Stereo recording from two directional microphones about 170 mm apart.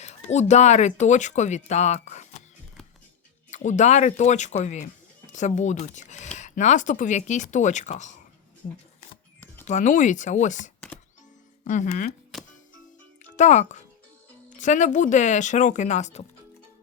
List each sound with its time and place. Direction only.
0.0 s speech: 40° left (ahead or behind)
3.5 s speech: 45° left (ahead or behind)
9.6 s speech: 45° left (ahead or behind)
13.2 s a child's voice: 45° left (ahead or behind)